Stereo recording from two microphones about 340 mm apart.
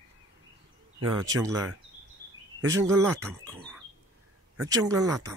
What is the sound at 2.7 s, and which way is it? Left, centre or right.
Speech, centre.